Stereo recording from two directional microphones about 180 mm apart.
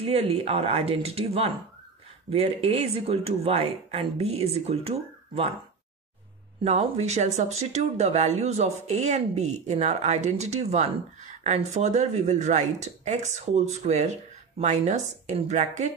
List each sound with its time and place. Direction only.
0.1 s speech: 35° right (ahead or behind)
6.6 s speech: 35° right (ahead or behind)